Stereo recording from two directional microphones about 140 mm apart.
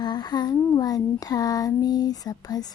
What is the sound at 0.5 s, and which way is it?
Speech, 25° left (ahead or behind).